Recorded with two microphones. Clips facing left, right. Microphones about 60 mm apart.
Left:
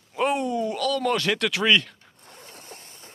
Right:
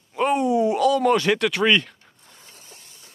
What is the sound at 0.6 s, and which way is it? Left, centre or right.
Speech, centre.